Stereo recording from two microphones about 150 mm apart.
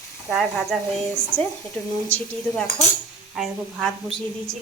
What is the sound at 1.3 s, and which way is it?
Speech, 60° left (ahead or behind).